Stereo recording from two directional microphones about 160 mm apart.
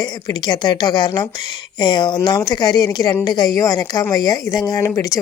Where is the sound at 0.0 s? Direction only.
25° left (ahead or behind).